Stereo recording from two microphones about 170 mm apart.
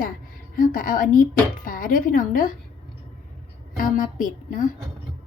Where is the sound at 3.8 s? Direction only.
50° left (ahead or behind).